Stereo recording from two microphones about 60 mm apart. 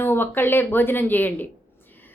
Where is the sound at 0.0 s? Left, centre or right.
Left.